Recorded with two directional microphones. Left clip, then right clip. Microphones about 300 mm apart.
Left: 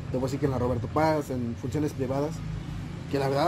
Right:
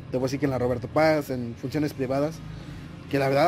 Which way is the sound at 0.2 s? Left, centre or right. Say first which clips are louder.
Right 2 dB; right.